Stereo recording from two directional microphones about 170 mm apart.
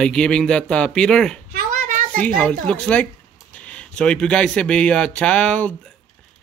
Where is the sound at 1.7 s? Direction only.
50° right (ahead or behind).